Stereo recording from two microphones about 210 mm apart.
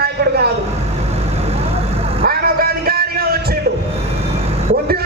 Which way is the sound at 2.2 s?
45° right (ahead or behind).